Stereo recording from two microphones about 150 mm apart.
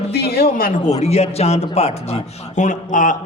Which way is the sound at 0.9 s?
45° left (ahead or behind).